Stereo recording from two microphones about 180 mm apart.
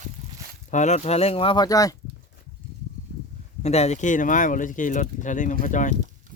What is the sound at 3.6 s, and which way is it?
Speech, 35° left (ahead or behind).